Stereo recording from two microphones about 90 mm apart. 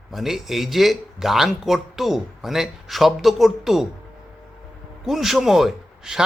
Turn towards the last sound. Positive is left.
turn(degrees=-5)  # may be behind; listen again after turning